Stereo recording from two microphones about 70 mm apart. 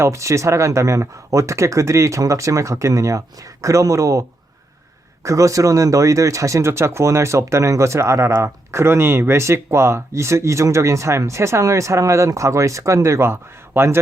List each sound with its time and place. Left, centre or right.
0.0 s speech: right